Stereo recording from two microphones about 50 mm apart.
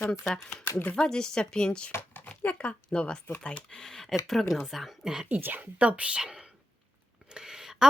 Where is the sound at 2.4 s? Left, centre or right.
Left; by 5.3 s centre.